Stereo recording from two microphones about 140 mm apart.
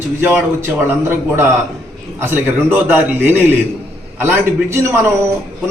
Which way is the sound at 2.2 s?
15° right (ahead or behind).